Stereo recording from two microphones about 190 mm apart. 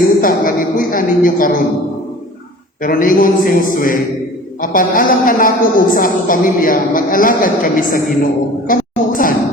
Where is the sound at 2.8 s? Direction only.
45° left (ahead or behind).